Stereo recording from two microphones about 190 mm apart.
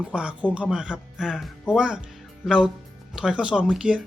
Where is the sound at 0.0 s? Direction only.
5° right (ahead or behind).